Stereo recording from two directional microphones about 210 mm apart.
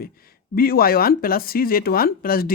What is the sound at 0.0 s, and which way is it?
Speech, 45° left (ahead or behind).